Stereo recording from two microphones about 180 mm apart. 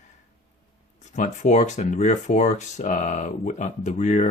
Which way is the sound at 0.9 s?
40° left (ahead or behind).